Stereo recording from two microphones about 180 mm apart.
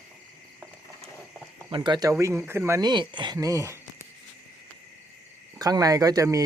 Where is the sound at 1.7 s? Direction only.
25° right (ahead or behind).